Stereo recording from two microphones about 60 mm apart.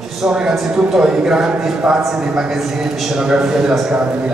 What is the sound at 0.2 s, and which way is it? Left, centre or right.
A man's voice, centre.